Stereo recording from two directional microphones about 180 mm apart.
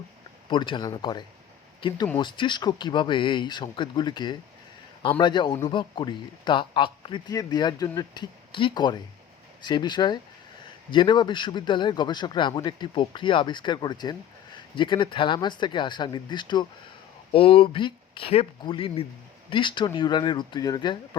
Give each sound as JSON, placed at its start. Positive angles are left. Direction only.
{"t": 0.5, "sound": "a man's voice", "side_deg": 25}